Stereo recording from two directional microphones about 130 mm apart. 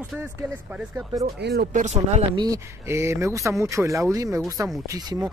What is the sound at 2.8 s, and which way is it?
Speech, 20° right (ahead or behind).